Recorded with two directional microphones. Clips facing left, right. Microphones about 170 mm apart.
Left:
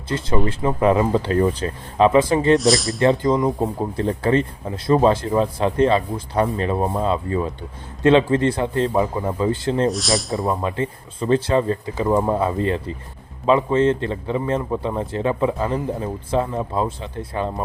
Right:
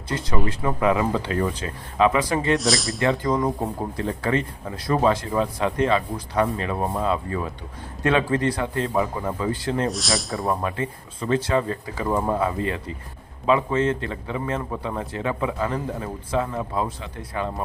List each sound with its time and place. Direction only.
0.1 s speech: 30° left (ahead or behind)
2.6 s speech: centre (ahead or behind)
3.0 s speech: 25° left (ahead or behind)
9.9 s speech: centre (ahead or behind)
10.5 s speech: 25° left (ahead or behind)
12.1 s speech: 15° left (ahead or behind)
12.4 s speech: 30° left (ahead or behind)